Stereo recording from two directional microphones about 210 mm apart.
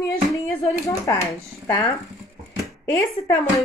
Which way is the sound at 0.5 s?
15° left (ahead or behind).